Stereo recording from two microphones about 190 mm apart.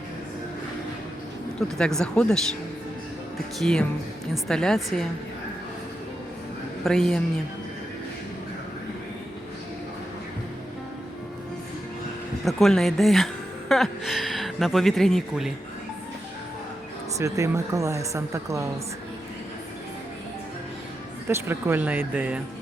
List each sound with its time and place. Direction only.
1.5 s speech: 5° left (ahead or behind)
3.6 s speech: centre (ahead or behind)
6.8 s speech: centre (ahead or behind)
12.5 s a woman's voice: centre (ahead or behind)
17.2 s speech: 15° right (ahead or behind)
21.2 s speech: 10° right (ahead or behind)